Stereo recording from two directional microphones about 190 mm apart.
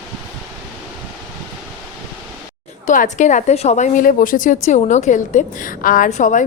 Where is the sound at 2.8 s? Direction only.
45° left (ahead or behind).